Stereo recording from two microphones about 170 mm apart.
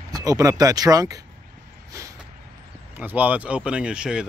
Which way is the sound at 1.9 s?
20° right (ahead or behind).